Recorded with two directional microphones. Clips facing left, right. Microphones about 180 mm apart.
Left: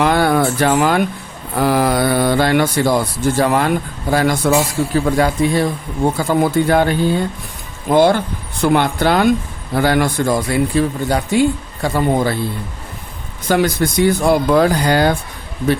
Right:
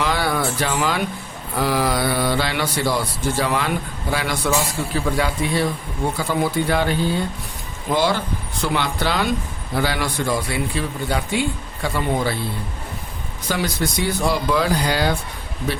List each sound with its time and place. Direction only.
0.0 s a sound: 50° left (ahead or behind)
1.5 s speech: 50° left (ahead or behind)
7.9 s speech: 55° left (ahead or behind)
13.5 s speech: 55° left (ahead or behind)